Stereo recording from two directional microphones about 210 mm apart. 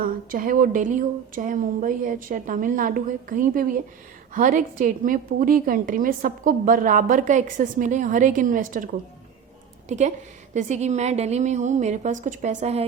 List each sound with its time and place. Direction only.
0.0 s a woman's voice: 45° right (ahead or behind)
10.5 s a woman's voice: 35° right (ahead or behind)